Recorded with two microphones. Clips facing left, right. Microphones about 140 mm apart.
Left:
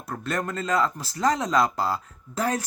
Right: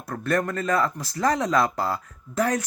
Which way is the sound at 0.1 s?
20° left (ahead or behind).